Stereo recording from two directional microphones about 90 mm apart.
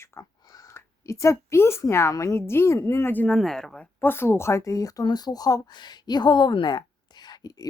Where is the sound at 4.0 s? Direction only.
25° left (ahead or behind).